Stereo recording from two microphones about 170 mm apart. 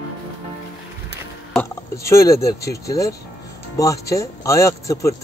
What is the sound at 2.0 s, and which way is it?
Speech, 15° left (ahead or behind).